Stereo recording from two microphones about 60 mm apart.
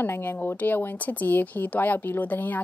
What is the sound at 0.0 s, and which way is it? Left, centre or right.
Speech, left.